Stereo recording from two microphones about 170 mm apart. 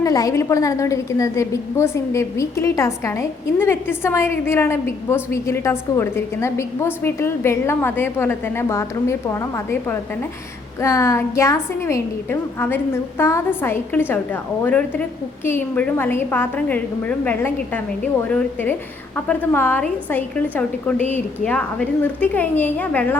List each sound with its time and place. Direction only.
0.0 s a woman's voice: 20° left (ahead or behind)